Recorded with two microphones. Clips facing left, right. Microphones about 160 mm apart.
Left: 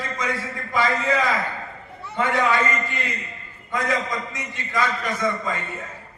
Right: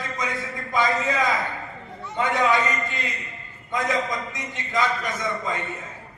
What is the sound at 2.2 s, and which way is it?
A man's voice, 20° right (ahead or behind).